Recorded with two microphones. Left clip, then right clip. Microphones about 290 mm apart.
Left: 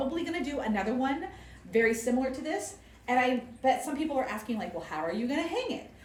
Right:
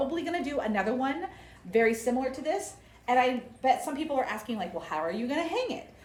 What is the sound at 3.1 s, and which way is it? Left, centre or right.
A woman's voice, right.